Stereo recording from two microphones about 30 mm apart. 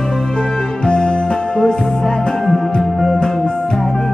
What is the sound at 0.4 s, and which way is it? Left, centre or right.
Music, left.